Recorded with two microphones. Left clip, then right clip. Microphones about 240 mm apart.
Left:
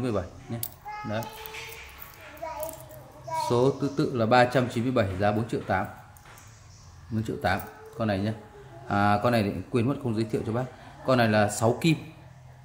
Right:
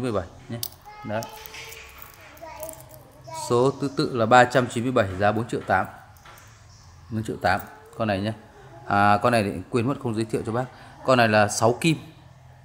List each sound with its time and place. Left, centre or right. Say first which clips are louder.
0.0 s speech: right 3 dB; right
3.4 s speech: right 4 dB; right
7.2 s speech: right 4 dB; right